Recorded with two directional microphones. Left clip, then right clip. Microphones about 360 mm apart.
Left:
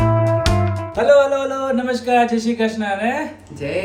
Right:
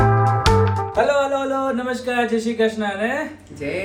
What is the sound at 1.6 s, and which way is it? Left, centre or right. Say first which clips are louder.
Speech: left 3 dB; centre.